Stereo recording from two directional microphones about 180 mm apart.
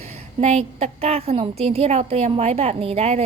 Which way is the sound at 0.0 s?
35° right (ahead or behind).